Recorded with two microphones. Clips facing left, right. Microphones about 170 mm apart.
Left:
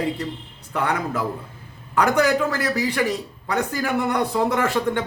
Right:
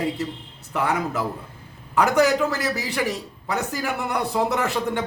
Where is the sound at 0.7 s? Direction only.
10° right (ahead or behind).